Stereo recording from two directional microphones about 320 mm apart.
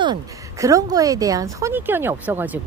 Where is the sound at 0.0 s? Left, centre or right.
Centre.